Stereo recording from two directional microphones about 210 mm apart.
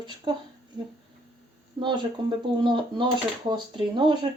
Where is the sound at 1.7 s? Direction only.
20° right (ahead or behind).